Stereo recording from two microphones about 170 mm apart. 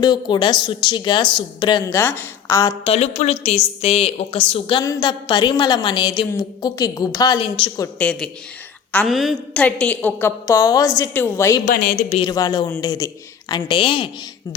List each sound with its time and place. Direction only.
0.0 s a woman's voice: 25° left (ahead or behind)
2.8 s a woman's voice: 35° left (ahead or behind)
4.8 s a woman's voice: 20° left (ahead or behind)
7.9 s a woman's voice: 10° left (ahead or behind)
11.6 s speech: 60° left (ahead or behind)
12.0 s a woman's voice: 35° left (ahead or behind)
12.3 s a woman's voice: 20° left (ahead or behind)